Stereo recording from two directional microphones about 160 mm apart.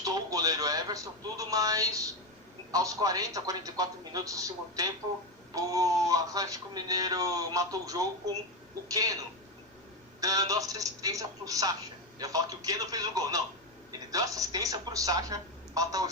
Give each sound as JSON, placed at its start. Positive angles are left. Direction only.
{"t": 0.0, "sound": "speech", "side_deg": -20}
{"t": 10.2, "sound": "speech", "side_deg": -20}